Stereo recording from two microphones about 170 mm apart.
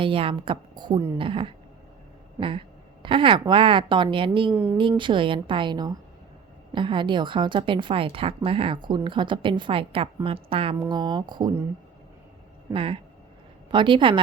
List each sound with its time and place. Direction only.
0.0 s a woman's voice: 30° right (ahead or behind)
4.5 s a woman's voice: 10° right (ahead or behind)
4.8 s a woman's voice: 30° right (ahead or behind)
12.7 s a woman's voice: 30° right (ahead or behind)